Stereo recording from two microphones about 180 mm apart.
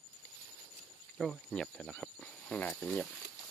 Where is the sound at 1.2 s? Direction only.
Centre (ahead or behind).